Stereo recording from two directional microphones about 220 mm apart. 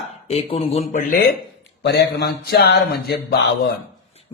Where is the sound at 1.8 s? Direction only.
50° left (ahead or behind).